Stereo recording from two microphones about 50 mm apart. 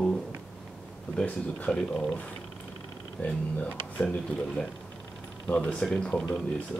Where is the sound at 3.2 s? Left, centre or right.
Left.